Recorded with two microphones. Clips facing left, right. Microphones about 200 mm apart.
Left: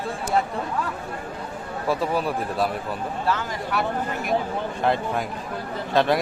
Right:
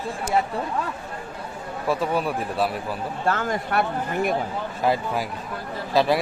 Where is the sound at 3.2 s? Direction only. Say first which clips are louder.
Right 3 dB; 50° right (ahead or behind).